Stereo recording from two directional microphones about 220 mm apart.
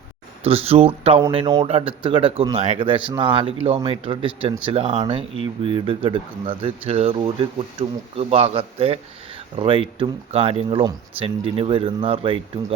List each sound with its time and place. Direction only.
0.4 s speech: 25° right (ahead or behind)